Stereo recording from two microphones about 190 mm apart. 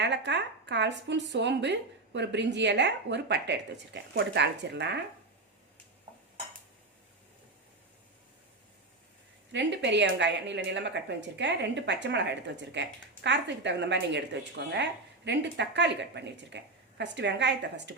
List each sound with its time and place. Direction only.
0.0 s speech: 65° right (ahead or behind)
9.5 s speech: 70° right (ahead or behind)